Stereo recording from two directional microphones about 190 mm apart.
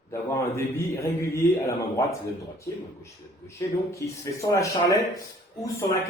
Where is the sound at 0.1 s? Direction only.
15° left (ahead or behind).